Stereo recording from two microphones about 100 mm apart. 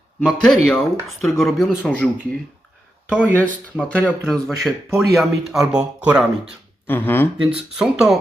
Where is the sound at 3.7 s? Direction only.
10° left (ahead or behind); by 6.3 s 10° right (ahead or behind).